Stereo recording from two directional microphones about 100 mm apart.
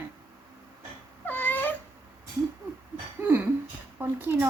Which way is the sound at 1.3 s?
20° left (ahead or behind).